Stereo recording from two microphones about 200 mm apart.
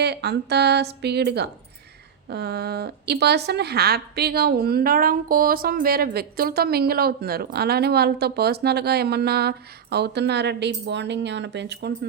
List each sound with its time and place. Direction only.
0.0 s a woman's voice: 55° right (ahead or behind)